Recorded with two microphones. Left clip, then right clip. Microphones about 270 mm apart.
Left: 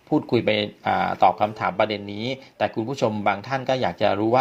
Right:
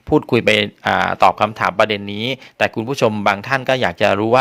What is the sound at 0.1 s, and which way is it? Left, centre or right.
Speech, right.